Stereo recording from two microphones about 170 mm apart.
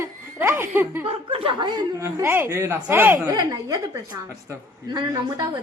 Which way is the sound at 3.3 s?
20° right (ahead or behind).